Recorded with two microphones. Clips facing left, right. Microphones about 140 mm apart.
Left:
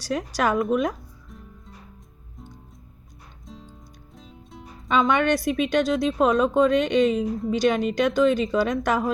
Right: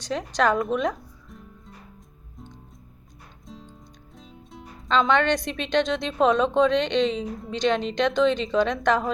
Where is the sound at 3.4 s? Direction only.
Centre (ahead or behind).